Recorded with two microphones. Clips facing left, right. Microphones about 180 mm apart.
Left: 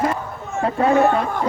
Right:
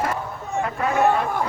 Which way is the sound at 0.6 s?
30° left (ahead or behind).